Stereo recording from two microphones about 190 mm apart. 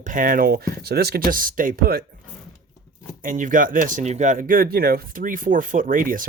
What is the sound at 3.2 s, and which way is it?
Speech, 45° right (ahead or behind).